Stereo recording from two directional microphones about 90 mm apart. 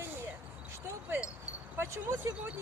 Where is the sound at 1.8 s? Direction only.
30° right (ahead or behind).